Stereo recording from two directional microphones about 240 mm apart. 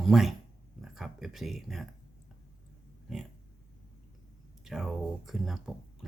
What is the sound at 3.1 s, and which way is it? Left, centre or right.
Speech, centre.